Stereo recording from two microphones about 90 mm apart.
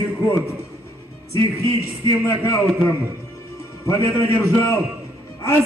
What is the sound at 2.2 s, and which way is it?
A man's voice, 35° left (ahead or behind).